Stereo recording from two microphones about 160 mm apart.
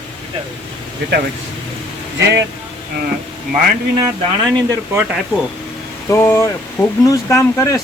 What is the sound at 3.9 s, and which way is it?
Speech, 25° right (ahead or behind).